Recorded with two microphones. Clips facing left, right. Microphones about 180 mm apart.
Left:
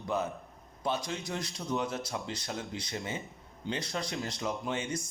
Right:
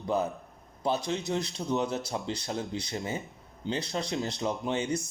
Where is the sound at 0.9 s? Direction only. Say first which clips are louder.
Right 4 dB; 30° right (ahead or behind).